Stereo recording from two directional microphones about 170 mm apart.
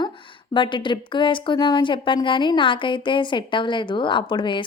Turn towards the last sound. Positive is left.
turn(degrees=30)  # may be behind; listen again after turning